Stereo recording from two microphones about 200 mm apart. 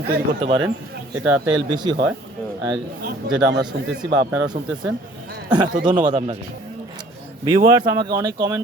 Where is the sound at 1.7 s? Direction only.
20° right (ahead or behind).